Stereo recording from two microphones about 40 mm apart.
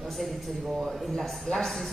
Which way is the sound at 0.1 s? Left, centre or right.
Centre.